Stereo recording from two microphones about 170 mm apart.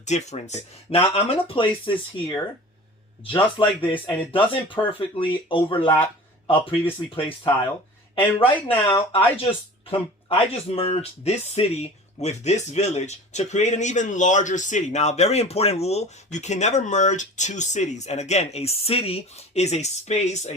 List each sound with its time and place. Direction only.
0.0 s speech: 40° left (ahead or behind)
3.8 s speech: 30° left (ahead or behind)